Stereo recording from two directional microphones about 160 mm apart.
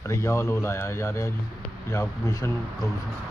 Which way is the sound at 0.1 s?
15° left (ahead or behind).